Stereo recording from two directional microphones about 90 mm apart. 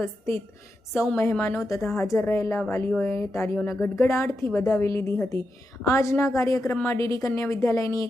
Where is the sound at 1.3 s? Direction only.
20° left (ahead or behind).